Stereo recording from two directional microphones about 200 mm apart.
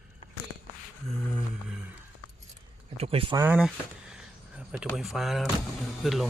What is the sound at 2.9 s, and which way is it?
Speech, 30° right (ahead or behind).